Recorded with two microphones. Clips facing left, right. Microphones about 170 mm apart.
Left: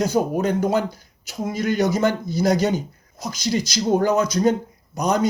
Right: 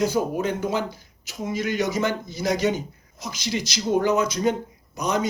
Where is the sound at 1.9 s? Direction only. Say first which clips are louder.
Left 4 dB; 35° left (ahead or behind).